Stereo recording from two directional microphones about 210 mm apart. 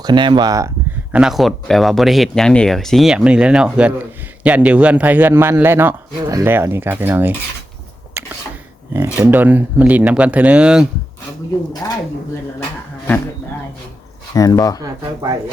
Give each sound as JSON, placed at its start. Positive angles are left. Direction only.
{"t": 0.0, "sound": "speech", "side_deg": -20}
{"t": 1.1, "sound": "a man's voice", "side_deg": 0}
{"t": 9.1, "sound": "a man's voice", "side_deg": -10}
{"t": 11.7, "sound": "speech", "side_deg": 20}
{"t": 14.3, "sound": "speech", "side_deg": 15}
{"t": 14.8, "sound": "a man's voice", "side_deg": -15}